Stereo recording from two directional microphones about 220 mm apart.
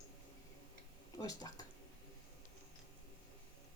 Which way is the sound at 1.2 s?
15° left (ahead or behind).